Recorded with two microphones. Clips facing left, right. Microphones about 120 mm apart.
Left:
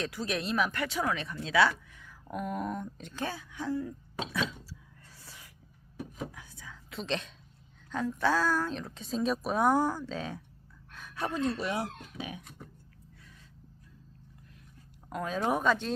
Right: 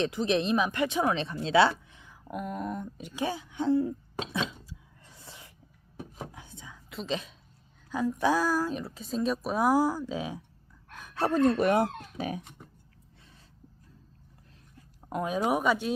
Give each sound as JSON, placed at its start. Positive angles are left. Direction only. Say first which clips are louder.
{"t": 0.0, "sound": "speech", "louder": "right 7 dB", "side_deg": -20}
{"t": 2.2, "sound": "speech", "louder": "even", "side_deg": 0}
{"t": 3.5, "sound": "a sound", "louder": "right 8 dB", "side_deg": -25}
{"t": 6.3, "sound": "whispering", "louder": "right 2 dB", "side_deg": -25}
{"t": 6.9, "sound": "speech", "louder": "right 1 dB", "side_deg": 0}
{"t": 11.3, "sound": "speech", "louder": "right 8 dB", "side_deg": -50}
{"t": 15.1, "sound": "speech", "louder": "right 3 dB", "side_deg": -15}